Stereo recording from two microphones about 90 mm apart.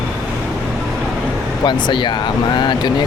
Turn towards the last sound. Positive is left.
turn(degrees=55)  # may be behind; listen again after turning